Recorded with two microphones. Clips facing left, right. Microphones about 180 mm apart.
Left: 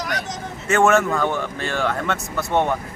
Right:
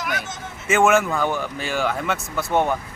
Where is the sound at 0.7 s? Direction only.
Centre (ahead or behind).